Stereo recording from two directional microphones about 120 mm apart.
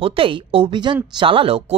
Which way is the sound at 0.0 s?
50° right (ahead or behind).